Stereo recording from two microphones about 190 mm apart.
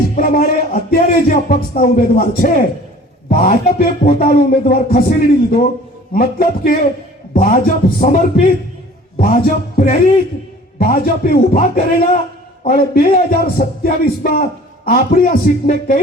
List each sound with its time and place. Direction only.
0.2 s music: 50° left (ahead or behind)
0.9 s a man's voice: 50° left (ahead or behind)